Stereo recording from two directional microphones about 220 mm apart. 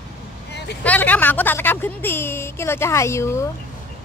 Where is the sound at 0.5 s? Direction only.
50° left (ahead or behind).